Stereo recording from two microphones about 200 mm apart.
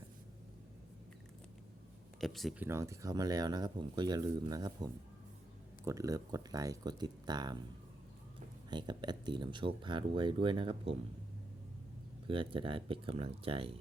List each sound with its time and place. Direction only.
2.2 s speech: centre (ahead or behind)
2.6 s speech: 15° right (ahead or behind)
8.7 s speech: 20° right (ahead or behind)
12.3 s speech: 25° right (ahead or behind)